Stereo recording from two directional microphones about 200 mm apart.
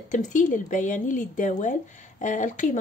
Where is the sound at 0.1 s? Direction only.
40° left (ahead or behind).